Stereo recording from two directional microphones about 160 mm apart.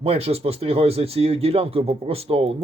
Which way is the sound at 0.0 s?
40° right (ahead or behind).